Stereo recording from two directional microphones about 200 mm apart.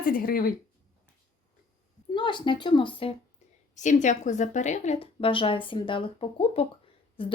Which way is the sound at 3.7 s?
40° left (ahead or behind).